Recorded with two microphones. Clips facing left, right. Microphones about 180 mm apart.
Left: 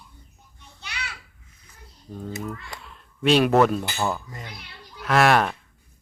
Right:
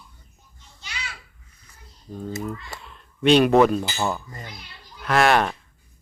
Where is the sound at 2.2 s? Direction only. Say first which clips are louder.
Right 2 dB; centre (ahead or behind).